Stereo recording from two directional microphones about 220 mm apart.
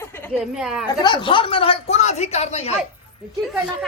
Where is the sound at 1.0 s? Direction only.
20° left (ahead or behind).